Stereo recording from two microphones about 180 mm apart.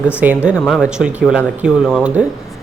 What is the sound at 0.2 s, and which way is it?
Speech, 10° right (ahead or behind).